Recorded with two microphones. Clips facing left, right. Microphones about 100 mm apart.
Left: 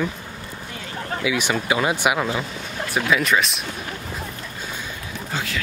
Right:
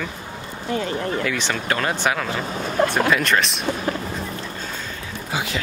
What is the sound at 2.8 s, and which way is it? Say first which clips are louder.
Speech: right 12 dB; 50° right (ahead or behind).